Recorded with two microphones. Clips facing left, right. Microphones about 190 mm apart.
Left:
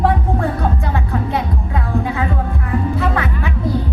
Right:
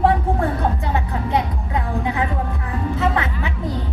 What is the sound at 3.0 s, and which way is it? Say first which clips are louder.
Music: left 1 dB; 20° right (ahead or behind).